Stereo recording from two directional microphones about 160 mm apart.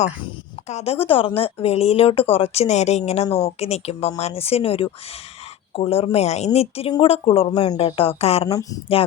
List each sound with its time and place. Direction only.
0.7 s a woman's voice: 40° left (ahead or behind)